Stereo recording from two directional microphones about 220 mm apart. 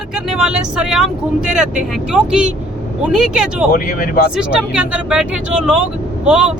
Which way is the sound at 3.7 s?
40° left (ahead or behind).